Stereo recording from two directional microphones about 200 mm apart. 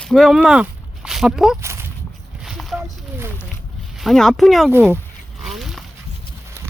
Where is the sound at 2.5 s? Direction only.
Centre (ahead or behind).